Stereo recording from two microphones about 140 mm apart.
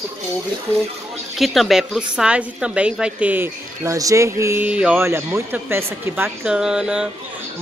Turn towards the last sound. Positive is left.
turn(degrees=-5)  # may be behind; listen again after turning